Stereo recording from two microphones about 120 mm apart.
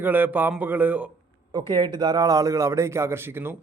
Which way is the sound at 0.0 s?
15° right (ahead or behind).